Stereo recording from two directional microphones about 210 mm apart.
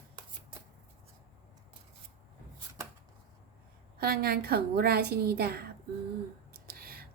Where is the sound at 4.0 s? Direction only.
45° right (ahead or behind).